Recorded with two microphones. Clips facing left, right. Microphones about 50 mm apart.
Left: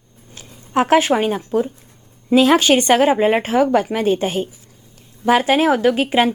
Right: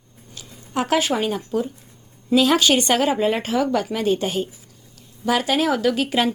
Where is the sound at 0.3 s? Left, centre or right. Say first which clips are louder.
Left 7 dB; left.